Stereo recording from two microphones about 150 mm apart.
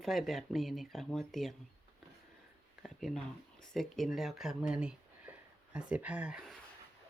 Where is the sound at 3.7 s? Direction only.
Centre (ahead or behind).